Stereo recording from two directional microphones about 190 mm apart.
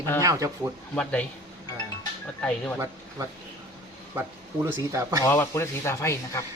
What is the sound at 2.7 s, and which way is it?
Speech, 15° right (ahead or behind).